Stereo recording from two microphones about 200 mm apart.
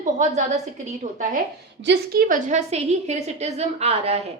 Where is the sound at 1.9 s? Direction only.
45° right (ahead or behind).